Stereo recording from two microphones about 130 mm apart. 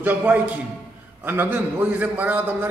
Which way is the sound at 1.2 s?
15° right (ahead or behind).